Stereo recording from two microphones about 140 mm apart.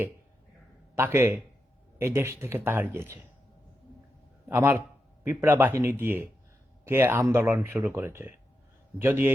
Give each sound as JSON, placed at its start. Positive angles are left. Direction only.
{"t": 0.9, "sound": "speech", "side_deg": -15}
{"t": 4.4, "sound": "speech", "side_deg": -15}